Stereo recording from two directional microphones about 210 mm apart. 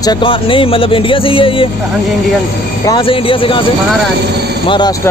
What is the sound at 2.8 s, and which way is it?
Speech, 20° left (ahead or behind).